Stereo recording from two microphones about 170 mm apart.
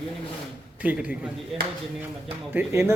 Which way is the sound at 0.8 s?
10° right (ahead or behind).